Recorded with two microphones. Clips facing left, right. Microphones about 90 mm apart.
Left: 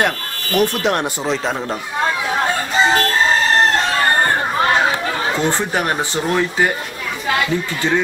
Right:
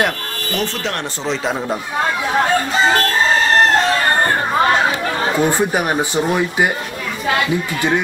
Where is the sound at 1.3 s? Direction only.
Centre (ahead or behind).